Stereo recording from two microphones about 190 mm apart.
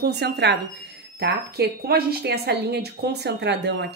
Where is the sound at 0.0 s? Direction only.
60° right (ahead or behind).